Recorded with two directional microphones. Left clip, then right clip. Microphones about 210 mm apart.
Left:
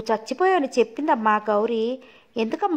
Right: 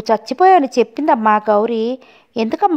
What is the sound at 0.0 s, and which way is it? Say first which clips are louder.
A woman's voice: right 9 dB; 45° right (ahead or behind).